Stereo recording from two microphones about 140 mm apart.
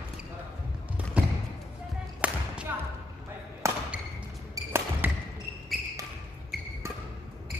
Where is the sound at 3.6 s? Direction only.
20° right (ahead or behind).